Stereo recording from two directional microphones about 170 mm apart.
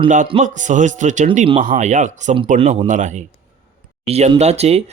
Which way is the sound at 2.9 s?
45° right (ahead or behind).